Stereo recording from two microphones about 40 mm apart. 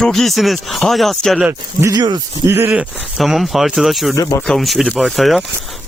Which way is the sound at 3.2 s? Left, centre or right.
Centre.